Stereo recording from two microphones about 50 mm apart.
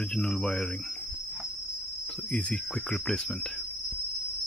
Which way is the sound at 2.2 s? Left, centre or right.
Left.